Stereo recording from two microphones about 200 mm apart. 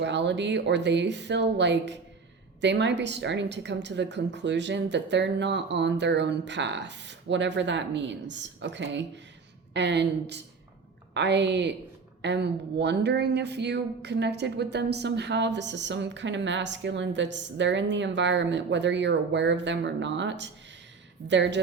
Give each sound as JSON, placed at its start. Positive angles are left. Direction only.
{"t": 0.0, "sound": "a woman's voice", "side_deg": -60}